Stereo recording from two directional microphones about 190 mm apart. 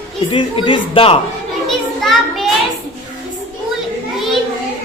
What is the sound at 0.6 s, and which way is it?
Speech, 25° left (ahead or behind).